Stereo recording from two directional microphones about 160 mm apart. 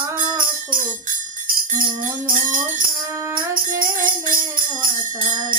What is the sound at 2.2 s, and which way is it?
Music, 60° right (ahead or behind).